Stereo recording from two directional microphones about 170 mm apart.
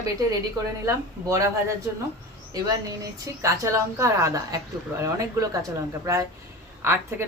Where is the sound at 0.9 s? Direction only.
20° right (ahead or behind).